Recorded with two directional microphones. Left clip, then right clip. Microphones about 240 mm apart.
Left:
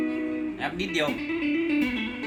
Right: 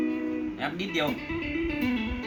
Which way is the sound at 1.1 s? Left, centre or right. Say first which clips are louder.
Left 4 dB; left.